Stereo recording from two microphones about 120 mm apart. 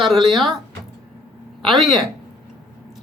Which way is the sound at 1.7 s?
Centre (ahead or behind).